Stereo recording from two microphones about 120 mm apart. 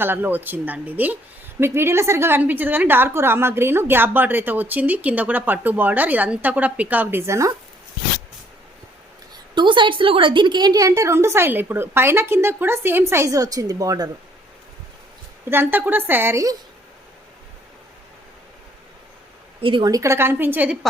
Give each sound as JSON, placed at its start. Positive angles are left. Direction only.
{"t": 0.0, "sound": "a woman's voice", "side_deg": -15}
{"t": 9.6, "sound": "a woman's voice", "side_deg": -40}
{"t": 15.4, "sound": "a woman's voice", "side_deg": -15}
{"t": 19.6, "sound": "a woman's voice", "side_deg": -45}
{"t": 19.9, "sound": "a woman's voice", "side_deg": -25}